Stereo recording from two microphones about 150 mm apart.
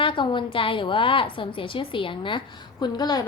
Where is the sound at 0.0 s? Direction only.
35° left (ahead or behind).